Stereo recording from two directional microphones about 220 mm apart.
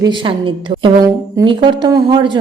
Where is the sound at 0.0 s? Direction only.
20° right (ahead or behind).